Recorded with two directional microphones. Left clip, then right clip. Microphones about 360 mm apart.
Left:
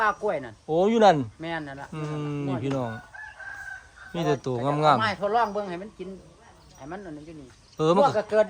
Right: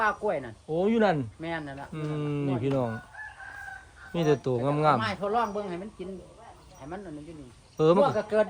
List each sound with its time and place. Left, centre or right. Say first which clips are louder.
0.0 s speech: left 2 dB; left
0.7 s speech: left 6 dB; centre
1.4 s speech: left 2 dB; left
1.9 s speech: right 1 dB; centre
4.1 s speech: right 1 dB; centre
4.9 s speech: left 4 dB; left
7.8 s speech: left 1 dB; centre
8.0 s speech: left 3 dB; left